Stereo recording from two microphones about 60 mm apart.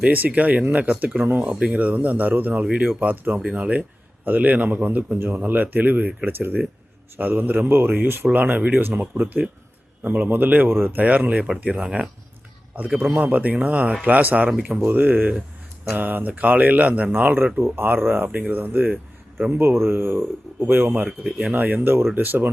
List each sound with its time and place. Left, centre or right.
0.0 s speech: right
13.1 s speech: right
14.8 s speech: right
18.3 s speech: right
19.5 s speech: right
21.8 s speech: right